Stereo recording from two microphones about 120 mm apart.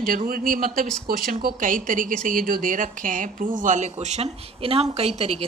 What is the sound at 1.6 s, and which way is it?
A woman's voice, 90° right.